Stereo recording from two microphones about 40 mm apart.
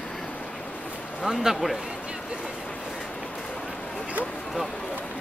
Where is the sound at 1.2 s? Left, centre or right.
Centre.